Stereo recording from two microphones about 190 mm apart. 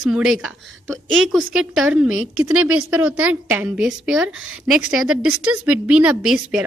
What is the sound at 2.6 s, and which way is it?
Speech, 90° right.